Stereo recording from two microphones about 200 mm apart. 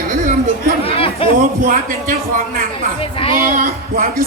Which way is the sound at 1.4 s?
45° right (ahead or behind).